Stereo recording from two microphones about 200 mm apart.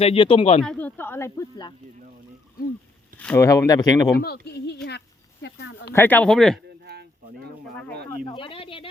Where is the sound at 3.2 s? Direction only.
10° left (ahead or behind).